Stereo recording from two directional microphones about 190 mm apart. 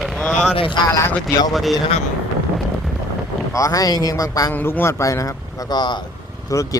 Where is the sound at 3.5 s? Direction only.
15° left (ahead or behind).